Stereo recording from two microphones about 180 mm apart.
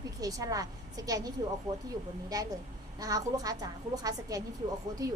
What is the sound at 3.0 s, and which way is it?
A woman's voice, 20° right (ahead or behind).